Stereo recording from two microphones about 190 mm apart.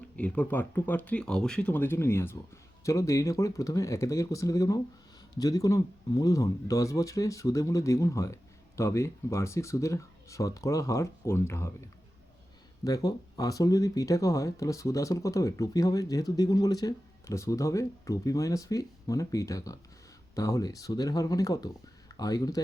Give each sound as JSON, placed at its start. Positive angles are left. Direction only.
{"t": 0.2, "sound": "speech", "side_deg": 5}
{"t": 12.8, "sound": "speech", "side_deg": 20}